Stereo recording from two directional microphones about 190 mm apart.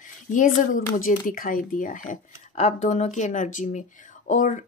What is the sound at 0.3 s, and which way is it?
Speech, 45° left (ahead or behind).